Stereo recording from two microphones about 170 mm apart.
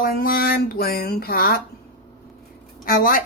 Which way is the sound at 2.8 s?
60° left (ahead or behind).